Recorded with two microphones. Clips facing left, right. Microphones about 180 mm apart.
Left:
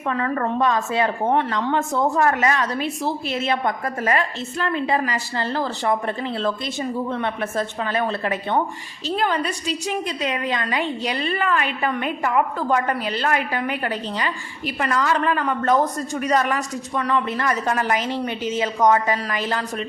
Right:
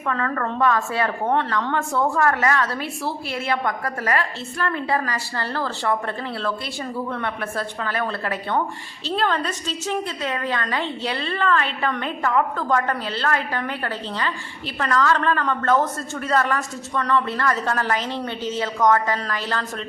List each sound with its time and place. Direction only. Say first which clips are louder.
0.1 s a woman's voice: left 2 dB; 20° left (ahead or behind)